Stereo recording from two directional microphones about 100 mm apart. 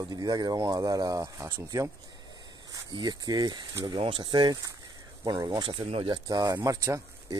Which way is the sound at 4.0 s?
65° right (ahead or behind).